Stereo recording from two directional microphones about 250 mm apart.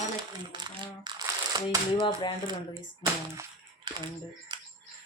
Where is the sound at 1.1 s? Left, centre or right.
Centre.